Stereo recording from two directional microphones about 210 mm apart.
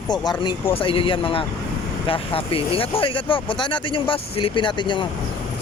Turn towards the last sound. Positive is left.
turn(degrees=20)  # may be behind; listen again after turning